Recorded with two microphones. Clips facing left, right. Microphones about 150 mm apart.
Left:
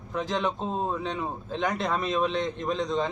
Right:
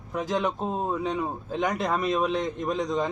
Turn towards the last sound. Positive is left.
turn(degrees=-10)  # may be behind; listen again after turning